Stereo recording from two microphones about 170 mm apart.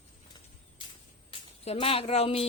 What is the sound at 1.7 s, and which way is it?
Speech, 35° left (ahead or behind).